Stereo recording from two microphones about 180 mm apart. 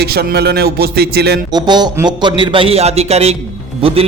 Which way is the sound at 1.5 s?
25° right (ahead or behind).